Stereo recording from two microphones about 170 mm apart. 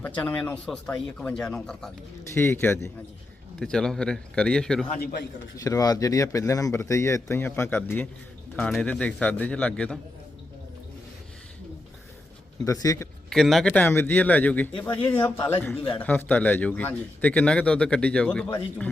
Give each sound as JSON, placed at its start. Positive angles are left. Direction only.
{"t": 0.0, "sound": "speech", "side_deg": 10}
{"t": 2.3, "sound": "a man's voice", "side_deg": 15}
{"t": 5.5, "sound": "a man's voice", "side_deg": 20}
{"t": 12.6, "sound": "a man's voice", "side_deg": 20}
{"t": 13.3, "sound": "a man's voice", "side_deg": 0}
{"t": 14.8, "sound": "speech", "side_deg": 30}
{"t": 15.1, "sound": "a man's voice", "side_deg": 15}